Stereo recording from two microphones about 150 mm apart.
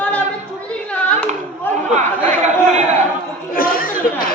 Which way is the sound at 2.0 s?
50° right (ahead or behind).